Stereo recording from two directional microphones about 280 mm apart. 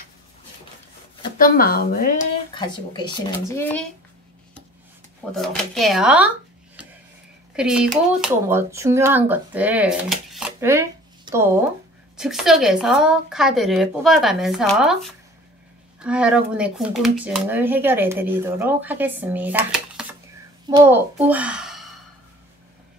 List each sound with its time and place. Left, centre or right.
1.4 s speech: left
2.5 s speech: centre
5.3 s a woman's voice: centre
7.5 s a woman's voice: centre
16.0 s a child's voice: centre